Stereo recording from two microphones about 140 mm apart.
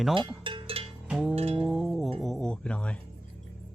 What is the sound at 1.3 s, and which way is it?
Music, 45° right (ahead or behind).